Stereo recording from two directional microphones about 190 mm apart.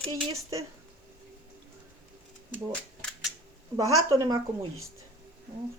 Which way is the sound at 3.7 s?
15° right (ahead or behind).